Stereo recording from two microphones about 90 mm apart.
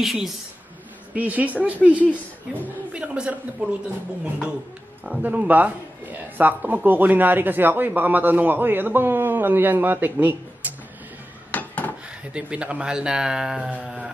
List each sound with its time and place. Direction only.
0.0 s a woman's voice: centre (ahead or behind)
1.1 s speech: 15° right (ahead or behind)
2.0 s a woman's voice: 20° left (ahead or behind)
2.9 s speech: 10° right (ahead or behind)
10.6 s music: 20° right (ahead or behind)
11.5 s dishes: 20° left (ahead or behind)
12.3 s speech: 10° right (ahead or behind)